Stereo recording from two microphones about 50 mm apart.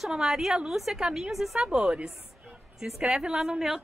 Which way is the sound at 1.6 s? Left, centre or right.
Centre.